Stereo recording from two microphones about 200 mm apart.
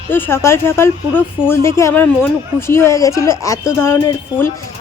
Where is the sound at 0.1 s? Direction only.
10° left (ahead or behind).